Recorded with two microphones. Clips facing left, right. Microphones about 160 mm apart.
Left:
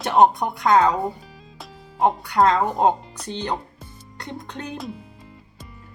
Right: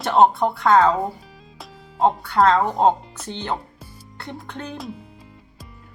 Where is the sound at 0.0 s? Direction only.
15° left (ahead or behind).